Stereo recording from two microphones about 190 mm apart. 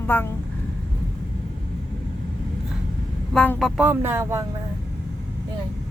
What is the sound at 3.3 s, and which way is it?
Speech, 5° left (ahead or behind).